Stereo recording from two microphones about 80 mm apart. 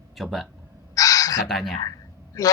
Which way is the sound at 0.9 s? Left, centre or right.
Left.